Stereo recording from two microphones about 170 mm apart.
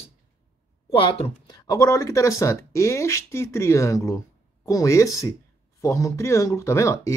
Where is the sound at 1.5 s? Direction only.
20° left (ahead or behind).